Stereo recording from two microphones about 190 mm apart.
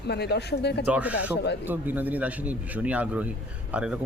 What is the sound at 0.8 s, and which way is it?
Speech, 5° right (ahead or behind).